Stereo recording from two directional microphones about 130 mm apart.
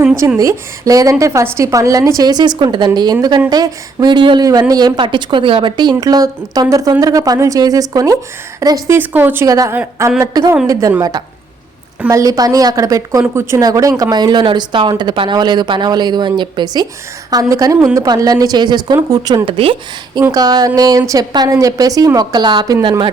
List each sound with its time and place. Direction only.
0.3 s a woman's voice: 25° right (ahead or behind)
9.0 s a woman's voice: 15° right (ahead or behind)
12.0 s a woman's voice: 25° right (ahead or behind)
19.5 s speech: 45° right (ahead or behind)
20.3 s a woman's voice: 30° right (ahead or behind)